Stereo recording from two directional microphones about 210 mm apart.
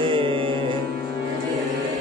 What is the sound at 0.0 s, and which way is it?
Music, 25° right (ahead or behind).